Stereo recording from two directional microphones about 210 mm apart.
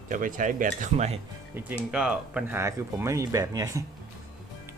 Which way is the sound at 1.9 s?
5° right (ahead or behind).